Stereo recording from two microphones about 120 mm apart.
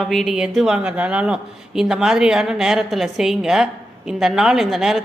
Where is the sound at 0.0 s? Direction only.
Centre (ahead or behind).